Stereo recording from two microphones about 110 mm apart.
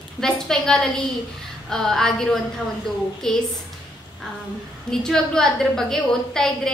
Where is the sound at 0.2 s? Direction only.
5° left (ahead or behind).